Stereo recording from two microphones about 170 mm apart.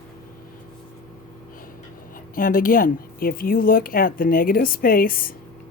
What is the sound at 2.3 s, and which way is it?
Speech, 55° left (ahead or behind).